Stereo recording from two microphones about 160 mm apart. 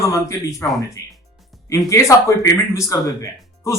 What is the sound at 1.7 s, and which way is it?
Speech, 20° left (ahead or behind).